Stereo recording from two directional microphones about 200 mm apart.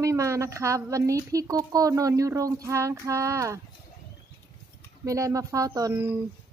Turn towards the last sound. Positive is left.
turn(degrees=-15)  # may be behind; listen again after turning